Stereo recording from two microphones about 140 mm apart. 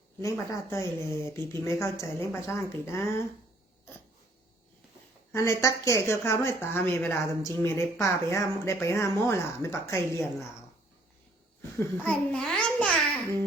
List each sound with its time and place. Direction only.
0.2 s speech: 20° left (ahead or behind)
5.3 s speech: 20° left (ahead or behind)
11.8 s a child's voice: 10° left (ahead or behind)